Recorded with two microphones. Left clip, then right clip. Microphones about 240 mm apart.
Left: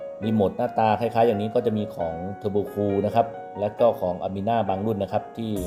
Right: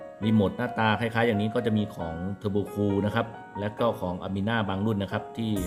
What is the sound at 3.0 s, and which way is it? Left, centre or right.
Speech, right.